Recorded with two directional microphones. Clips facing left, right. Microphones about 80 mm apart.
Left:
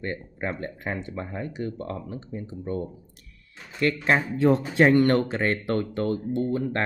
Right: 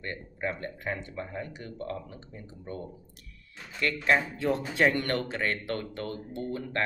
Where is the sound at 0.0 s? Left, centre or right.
Left.